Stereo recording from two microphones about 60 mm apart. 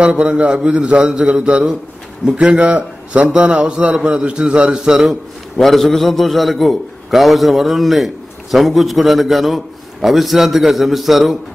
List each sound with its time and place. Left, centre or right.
0.0 s a man's voice: centre
5.6 s a man's voice: centre